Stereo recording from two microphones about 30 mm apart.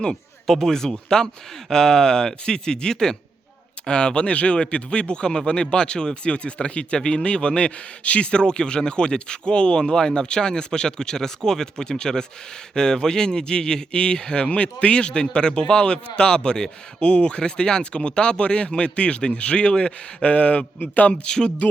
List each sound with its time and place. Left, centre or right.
0.1 s a man's voice: centre
3.8 s a man's voice: left
20.2 s speech: left
20.9 s speech: left
21.2 s a man's voice: left